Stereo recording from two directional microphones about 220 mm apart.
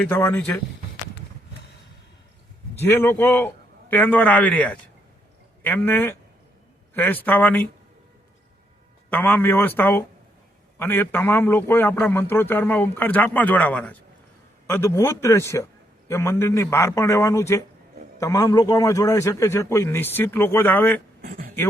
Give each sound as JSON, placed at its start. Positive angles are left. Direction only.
{"t": 0.0, "sound": "a man's voice", "side_deg": 5}
{"t": 2.7, "sound": "a man's voice", "side_deg": 10}
{"t": 9.0, "sound": "a man's voice", "side_deg": 10}
{"t": 21.2, "sound": "a sound", "side_deg": -40}